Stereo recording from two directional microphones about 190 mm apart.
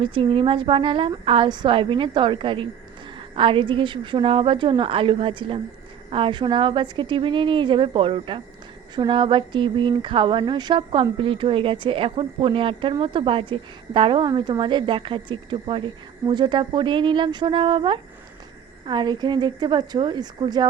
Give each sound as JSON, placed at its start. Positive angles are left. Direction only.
{"t": 0.0, "sound": "speech", "side_deg": -30}